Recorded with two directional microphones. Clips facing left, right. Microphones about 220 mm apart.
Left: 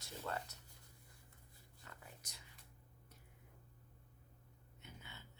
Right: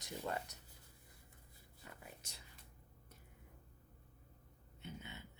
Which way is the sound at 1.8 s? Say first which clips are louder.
Right 3 dB; 20° right (ahead or behind).